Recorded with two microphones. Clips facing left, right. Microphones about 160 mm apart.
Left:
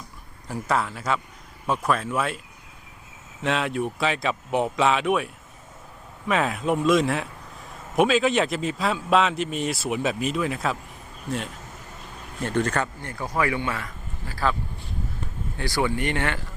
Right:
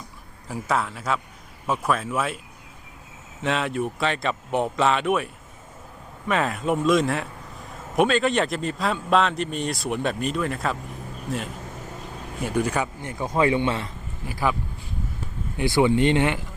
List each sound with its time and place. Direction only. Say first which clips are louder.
0.4 s a man's voice: even; centre (ahead or behind)
3.4 s a man's voice: even; centre (ahead or behind); by 14.5 s 15° right (ahead or behind)
15.5 s speech: right 6 dB; 20° right (ahead or behind)